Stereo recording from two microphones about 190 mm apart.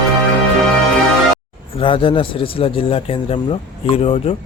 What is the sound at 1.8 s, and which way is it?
Speech, 25° left (ahead or behind).